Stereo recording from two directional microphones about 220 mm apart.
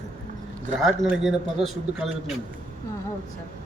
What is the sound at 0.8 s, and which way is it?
A man's voice, centre (ahead or behind).